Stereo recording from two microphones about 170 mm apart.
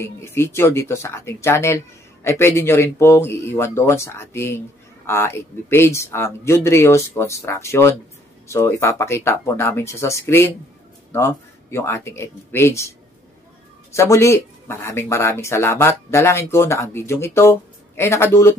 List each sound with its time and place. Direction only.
0.0 s a man's voice: 15° left (ahead or behind)
13.9 s a man's voice: 15° left (ahead or behind)